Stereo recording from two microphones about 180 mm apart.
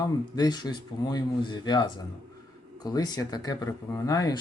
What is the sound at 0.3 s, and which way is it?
Speech, 20° left (ahead or behind).